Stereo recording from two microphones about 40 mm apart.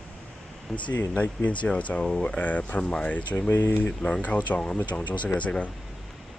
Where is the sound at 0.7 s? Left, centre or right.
Left.